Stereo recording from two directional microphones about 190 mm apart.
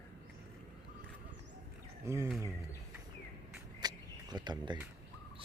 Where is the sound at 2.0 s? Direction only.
15° right (ahead or behind).